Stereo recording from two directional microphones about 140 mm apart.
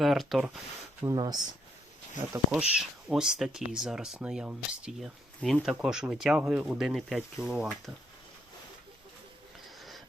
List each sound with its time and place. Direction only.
0.0 s speech: centre (ahead or behind)
1.0 s speech: 30° right (ahead or behind)
2.5 s speech: 5° right (ahead or behind)